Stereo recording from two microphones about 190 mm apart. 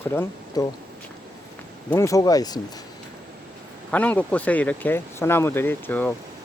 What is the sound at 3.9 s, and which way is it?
Speech, 5° left (ahead or behind).